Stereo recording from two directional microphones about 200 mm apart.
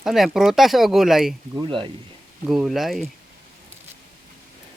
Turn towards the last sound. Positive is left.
turn(degrees=0)  # may be behind; listen again after turning